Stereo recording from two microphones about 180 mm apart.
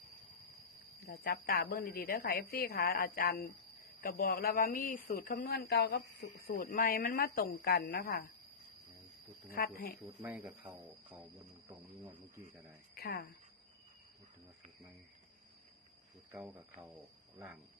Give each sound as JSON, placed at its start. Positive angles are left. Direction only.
{"t": 1.0, "sound": "a woman's voice", "side_deg": 60}
{"t": 9.5, "sound": "speech", "side_deg": 55}
{"t": 10.2, "sound": "speech", "side_deg": -10}
{"t": 12.9, "sound": "a woman's voice", "side_deg": 55}
{"t": 16.3, "sound": "speech", "side_deg": -10}